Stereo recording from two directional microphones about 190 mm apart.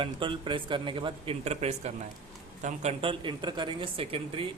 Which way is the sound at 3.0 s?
25° right (ahead or behind).